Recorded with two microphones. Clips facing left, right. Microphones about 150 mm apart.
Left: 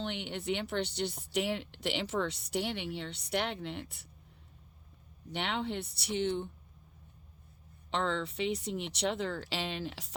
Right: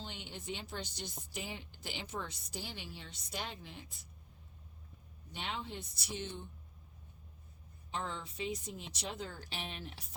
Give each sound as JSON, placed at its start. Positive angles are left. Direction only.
{"t": 0.0, "sound": "speech", "side_deg": 70}
{"t": 1.3, "sound": "speech", "side_deg": 80}
{"t": 5.3, "sound": "speech", "side_deg": 70}
{"t": 7.9, "sound": "speech", "side_deg": 80}